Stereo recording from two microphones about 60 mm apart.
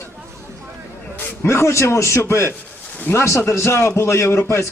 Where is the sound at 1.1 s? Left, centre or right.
Left.